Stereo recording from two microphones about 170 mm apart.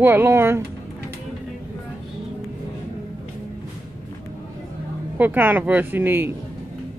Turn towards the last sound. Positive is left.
turn(degrees=-10)  # may be behind; listen again after turning